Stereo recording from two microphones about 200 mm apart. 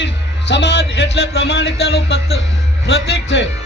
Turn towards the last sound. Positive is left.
turn(degrees=60)  # may be behind; listen again after turning